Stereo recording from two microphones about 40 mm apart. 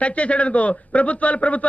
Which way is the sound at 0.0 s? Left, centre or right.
Left.